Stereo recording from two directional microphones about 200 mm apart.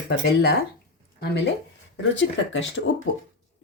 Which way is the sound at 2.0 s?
65° left (ahead or behind).